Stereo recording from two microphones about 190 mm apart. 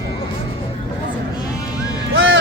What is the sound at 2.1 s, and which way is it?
Music, 80° right.